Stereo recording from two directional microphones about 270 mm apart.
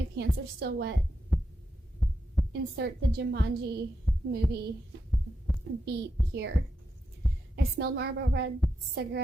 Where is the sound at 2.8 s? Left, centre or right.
Right.